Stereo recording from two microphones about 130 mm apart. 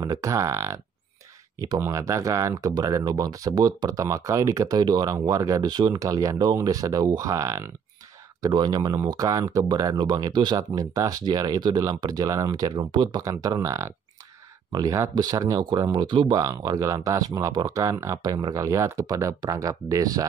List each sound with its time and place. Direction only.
0.0 s speech: 25° right (ahead or behind)
1.8 s speech: 25° right (ahead or behind)